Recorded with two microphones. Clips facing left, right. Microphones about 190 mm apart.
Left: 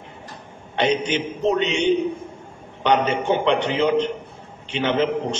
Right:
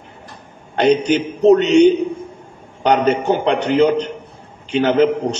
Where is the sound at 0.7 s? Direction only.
40° right (ahead or behind).